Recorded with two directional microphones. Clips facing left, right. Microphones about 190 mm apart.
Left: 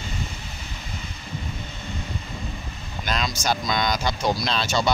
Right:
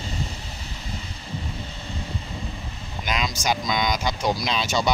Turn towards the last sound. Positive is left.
turn(degrees=-15)  # may be behind; listen again after turning